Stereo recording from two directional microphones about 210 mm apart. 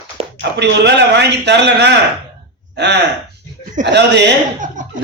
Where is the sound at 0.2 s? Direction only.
25° right (ahead or behind).